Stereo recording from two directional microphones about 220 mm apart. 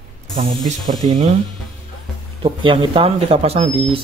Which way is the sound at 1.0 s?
35° right (ahead or behind).